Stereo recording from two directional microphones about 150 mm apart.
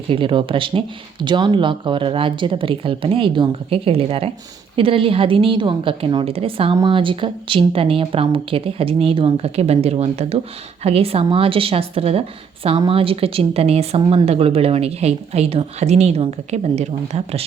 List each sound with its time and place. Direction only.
0.1 s a woman's voice: 35° right (ahead or behind)